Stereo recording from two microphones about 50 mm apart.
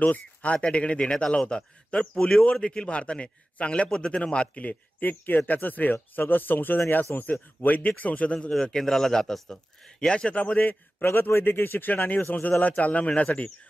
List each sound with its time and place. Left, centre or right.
0.0 s a man's voice: left
10.3 s a man's voice: left